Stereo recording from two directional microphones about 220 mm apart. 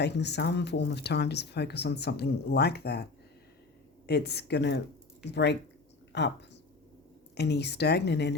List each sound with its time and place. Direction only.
0.0 s speech: 50° left (ahead or behind)